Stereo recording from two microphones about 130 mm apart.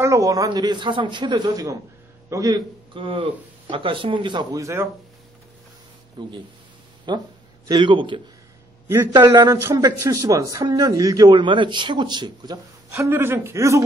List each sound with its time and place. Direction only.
0.0 s a man's voice: 25° right (ahead or behind)
2.9 s a man's voice: 40° right (ahead or behind)
4.6 s a man's voice: 25° right (ahead or behind)
6.2 s a man's voice: 35° right (ahead or behind)
8.8 s a man's voice: 15° right (ahead or behind)
9.1 s a man's voice: 35° right (ahead or behind)